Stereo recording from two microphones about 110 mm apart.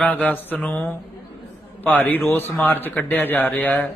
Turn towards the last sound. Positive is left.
turn(degrees=15)  # may be behind; listen again after turning